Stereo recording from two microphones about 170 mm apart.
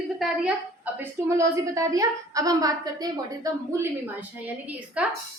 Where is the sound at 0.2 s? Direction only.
5° right (ahead or behind).